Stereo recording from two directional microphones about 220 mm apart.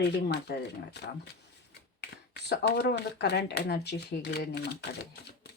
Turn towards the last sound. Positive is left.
turn(degrees=45)  # may be behind; listen again after turning